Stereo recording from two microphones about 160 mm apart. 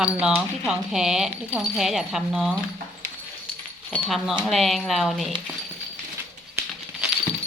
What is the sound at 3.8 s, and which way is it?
Speech, 5° left (ahead or behind).